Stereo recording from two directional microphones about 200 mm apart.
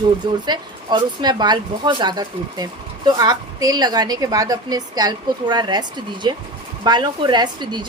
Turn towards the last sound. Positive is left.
turn(degrees=-20)  # may be behind; listen again after turning